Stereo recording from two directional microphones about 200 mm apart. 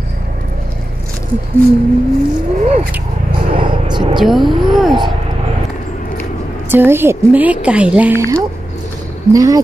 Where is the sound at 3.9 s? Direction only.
20° right (ahead or behind).